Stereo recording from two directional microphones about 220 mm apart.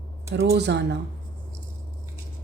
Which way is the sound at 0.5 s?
50° right (ahead or behind).